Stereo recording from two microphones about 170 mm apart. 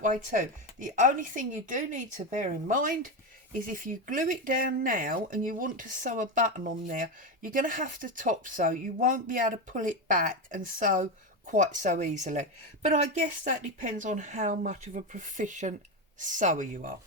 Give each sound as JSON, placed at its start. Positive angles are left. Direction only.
{"t": 0.0, "sound": "speech", "side_deg": -50}